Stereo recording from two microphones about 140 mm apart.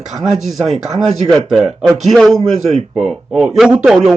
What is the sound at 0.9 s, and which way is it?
Speech, 55° right (ahead or behind).